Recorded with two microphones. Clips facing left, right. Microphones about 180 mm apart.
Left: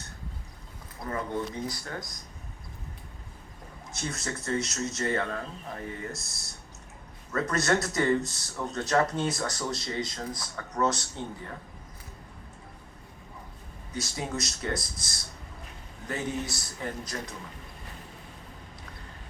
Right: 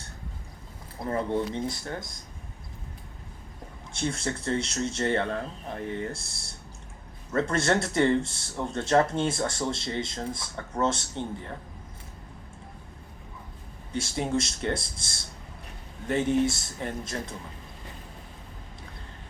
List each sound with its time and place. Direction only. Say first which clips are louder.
1.0 s speech: right 4 dB; 30° right (ahead or behind)
4.0 s speech: right 5 dB; 30° right (ahead or behind)
13.9 s speech: right 6 dB; 25° right (ahead or behind)